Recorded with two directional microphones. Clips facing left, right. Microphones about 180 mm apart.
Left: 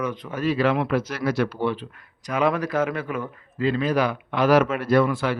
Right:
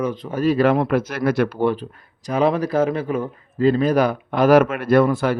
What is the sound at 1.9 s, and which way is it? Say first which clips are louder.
Speech: right 4 dB; 30° right (ahead or behind).